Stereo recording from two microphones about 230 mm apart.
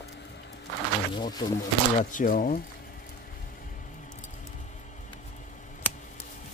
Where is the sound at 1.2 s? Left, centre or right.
Centre.